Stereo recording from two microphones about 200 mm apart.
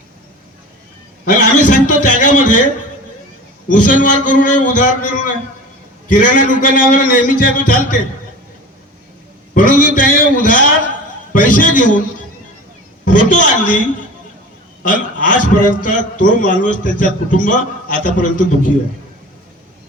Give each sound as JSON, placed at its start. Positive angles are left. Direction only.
{"t": 1.2, "sound": "a man's voice", "side_deg": 45}
{"t": 3.7, "sound": "a man's voice", "side_deg": 45}
{"t": 9.6, "sound": "a man's voice", "side_deg": 40}
{"t": 13.1, "sound": "a man's voice", "side_deg": 45}
{"t": 14.8, "sound": "a man's voice", "side_deg": 45}